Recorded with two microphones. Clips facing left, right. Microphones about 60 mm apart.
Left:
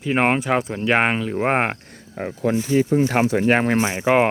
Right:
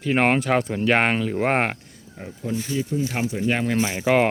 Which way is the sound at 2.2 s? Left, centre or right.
Left.